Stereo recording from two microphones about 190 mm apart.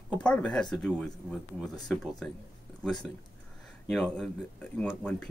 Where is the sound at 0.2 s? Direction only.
5° left (ahead or behind).